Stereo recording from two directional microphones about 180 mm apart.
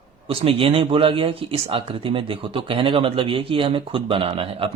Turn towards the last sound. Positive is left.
turn(degrees=-30)  # may be behind; listen again after turning